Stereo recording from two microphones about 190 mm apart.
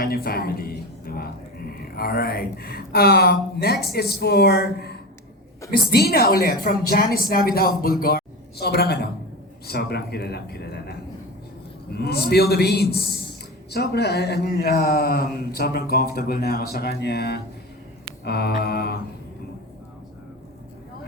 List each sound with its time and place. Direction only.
0.0 s a woman's voice: 55° left (ahead or behind)